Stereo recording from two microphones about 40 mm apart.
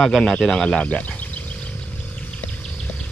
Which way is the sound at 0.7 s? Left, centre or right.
Left.